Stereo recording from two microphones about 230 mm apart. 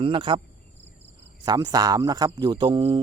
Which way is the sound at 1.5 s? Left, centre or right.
Centre.